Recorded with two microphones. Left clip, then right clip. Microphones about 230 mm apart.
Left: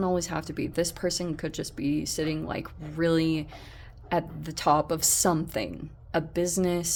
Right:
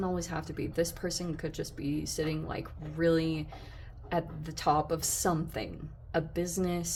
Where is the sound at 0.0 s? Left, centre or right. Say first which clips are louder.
Left 6 dB; left.